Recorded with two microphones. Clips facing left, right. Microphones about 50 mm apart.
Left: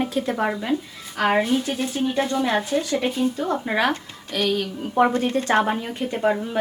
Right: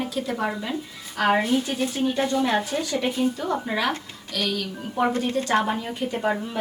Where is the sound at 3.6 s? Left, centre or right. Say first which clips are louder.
Left 3 dB; left.